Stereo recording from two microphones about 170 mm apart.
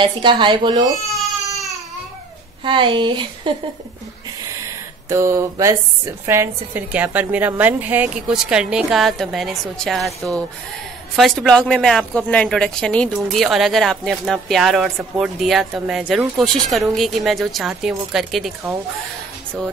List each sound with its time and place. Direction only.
0.0 s speech: 30° right (ahead or behind)
1.1 s baby cry: centre (ahead or behind)
2.6 s speech: 30° right (ahead or behind)
5.1 s a woman's voice: 15° right (ahead or behind); by 18.5 s centre (ahead or behind)